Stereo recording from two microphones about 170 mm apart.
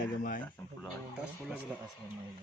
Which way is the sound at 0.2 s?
55° left (ahead or behind).